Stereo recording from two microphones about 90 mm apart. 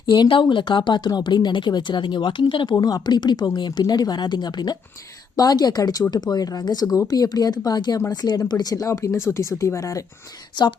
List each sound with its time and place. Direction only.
0.0 s speech: 55° left (ahead or behind)
2.7 s speech: 45° left (ahead or behind)